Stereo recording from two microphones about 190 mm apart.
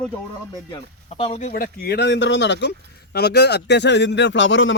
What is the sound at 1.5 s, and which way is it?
Speech, 55° left (ahead or behind).